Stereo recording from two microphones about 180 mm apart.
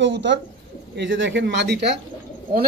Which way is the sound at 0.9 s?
90° right.